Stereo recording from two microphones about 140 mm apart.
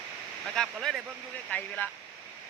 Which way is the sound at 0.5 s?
5° left (ahead or behind).